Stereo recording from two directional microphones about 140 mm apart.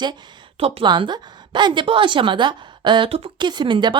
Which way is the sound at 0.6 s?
40° right (ahead or behind).